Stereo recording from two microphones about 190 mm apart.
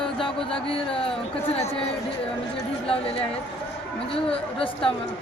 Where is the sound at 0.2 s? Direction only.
25° left (ahead or behind).